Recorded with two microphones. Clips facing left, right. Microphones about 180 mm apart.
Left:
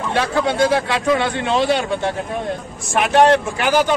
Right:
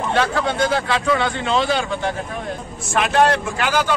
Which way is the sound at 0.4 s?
15° left (ahead or behind).